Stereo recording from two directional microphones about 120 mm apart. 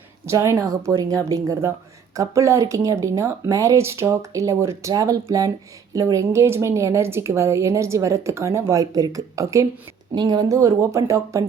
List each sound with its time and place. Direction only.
0.3 s speech: 25° right (ahead or behind)